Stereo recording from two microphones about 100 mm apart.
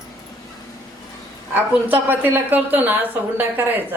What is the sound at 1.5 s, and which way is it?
A woman's voice, 20° right (ahead or behind).